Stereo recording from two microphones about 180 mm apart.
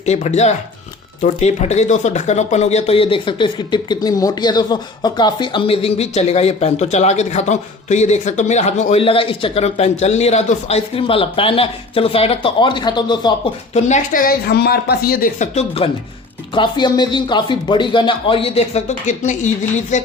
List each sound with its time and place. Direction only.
0.0 s speech: 40° left (ahead or behind)
13.7 s speech: 40° left (ahead or behind)
15.5 s speech: 30° left (ahead or behind)